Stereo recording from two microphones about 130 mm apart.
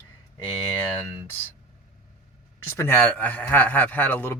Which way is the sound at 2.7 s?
15° left (ahead or behind).